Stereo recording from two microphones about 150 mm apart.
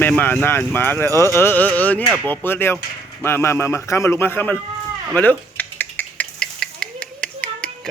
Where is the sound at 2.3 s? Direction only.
15° left (ahead or behind).